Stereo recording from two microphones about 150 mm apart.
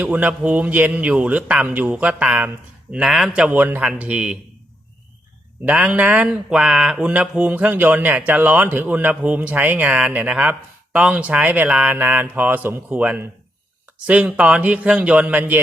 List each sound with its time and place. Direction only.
0.0 s speech: 10° right (ahead or behind)
5.6 s speech: 10° right (ahead or behind)